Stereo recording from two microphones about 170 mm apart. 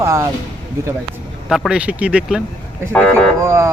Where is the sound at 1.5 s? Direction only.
5° right (ahead or behind).